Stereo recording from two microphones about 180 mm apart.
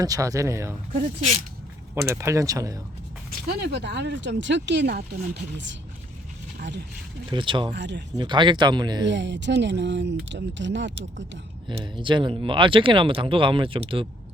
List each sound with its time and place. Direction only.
0.0 s speech: 20° right (ahead or behind)
0.9 s speech: 40° right (ahead or behind)
2.0 s speech: 15° right (ahead or behind)
3.2 s speech: 60° right (ahead or behind)
7.3 s speech: 25° right (ahead or behind)
7.7 s speech: 75° right (ahead or behind)
8.1 s speech: 25° right (ahead or behind)
9.0 s speech: 80° right
11.8 s speech: 25° right (ahead or behind)